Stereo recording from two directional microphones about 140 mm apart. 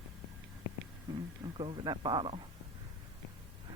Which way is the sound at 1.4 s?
35° right (ahead or behind).